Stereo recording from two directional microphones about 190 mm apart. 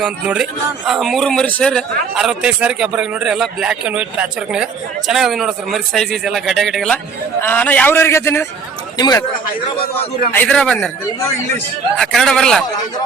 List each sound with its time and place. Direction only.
0.0 s a man's voice: 5° right (ahead or behind); by 9.2 s 20° left (ahead or behind)
10.3 s a man's voice: 10° left (ahead or behind)
11.9 s a man's voice: centre (ahead or behind)